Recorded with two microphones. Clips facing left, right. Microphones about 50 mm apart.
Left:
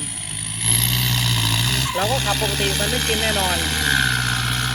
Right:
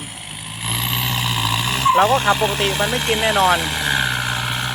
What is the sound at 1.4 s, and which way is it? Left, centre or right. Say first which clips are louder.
Vehicle: right 3 dB; centre.